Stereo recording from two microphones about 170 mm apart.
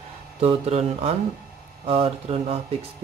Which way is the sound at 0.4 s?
40° right (ahead or behind).